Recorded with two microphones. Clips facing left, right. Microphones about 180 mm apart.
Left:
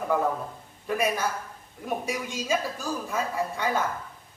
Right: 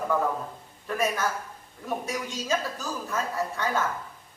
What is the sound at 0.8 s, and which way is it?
A man's voice, 15° left (ahead or behind).